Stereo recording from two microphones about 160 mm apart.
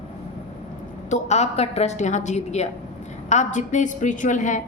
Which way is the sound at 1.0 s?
45° left (ahead or behind).